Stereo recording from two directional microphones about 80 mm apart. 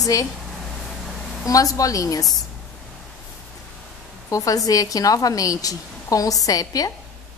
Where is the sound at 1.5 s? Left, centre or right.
Left.